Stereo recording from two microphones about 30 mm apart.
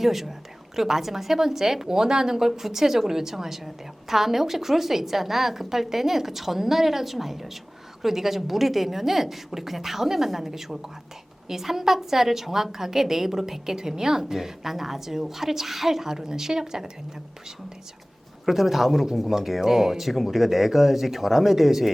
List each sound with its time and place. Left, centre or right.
0.0 s a woman's voice: centre
18.4 s a woman's voice: centre